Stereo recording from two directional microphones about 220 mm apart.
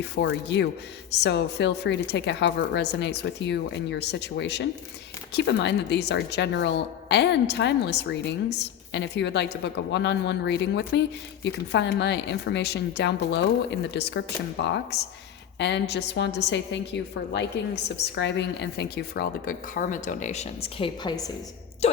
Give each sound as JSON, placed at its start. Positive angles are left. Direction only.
{"t": 0.0, "sound": "a woman's voice", "side_deg": 50}
{"t": 21.8, "sound": "speech", "side_deg": 30}